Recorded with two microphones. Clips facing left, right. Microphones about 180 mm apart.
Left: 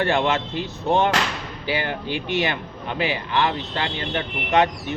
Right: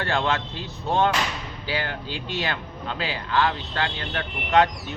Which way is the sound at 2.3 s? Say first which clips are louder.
Left 4 dB; 20° left (ahead or behind).